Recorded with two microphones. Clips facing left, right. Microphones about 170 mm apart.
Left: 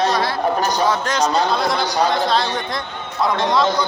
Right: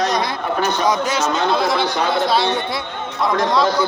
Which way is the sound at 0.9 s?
10° right (ahead or behind).